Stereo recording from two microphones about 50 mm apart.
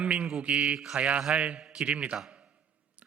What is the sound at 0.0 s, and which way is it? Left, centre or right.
Speech, right.